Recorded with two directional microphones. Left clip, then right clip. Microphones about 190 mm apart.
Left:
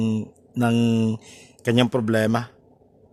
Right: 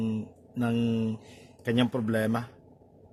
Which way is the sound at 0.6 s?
50° left (ahead or behind).